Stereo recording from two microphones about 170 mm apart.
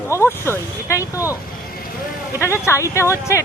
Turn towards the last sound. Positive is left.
turn(degrees=15)  # may be behind; listen again after turning